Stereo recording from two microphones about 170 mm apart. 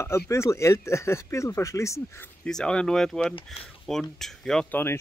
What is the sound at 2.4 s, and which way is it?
Speech, 5° left (ahead or behind).